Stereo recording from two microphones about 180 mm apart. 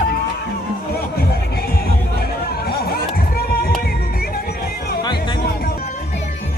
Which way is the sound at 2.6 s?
60° left (ahead or behind).